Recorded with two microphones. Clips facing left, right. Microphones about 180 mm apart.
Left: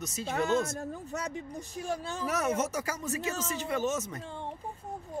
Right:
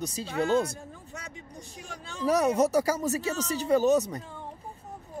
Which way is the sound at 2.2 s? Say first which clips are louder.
Right 8 dB; 35° right (ahead or behind).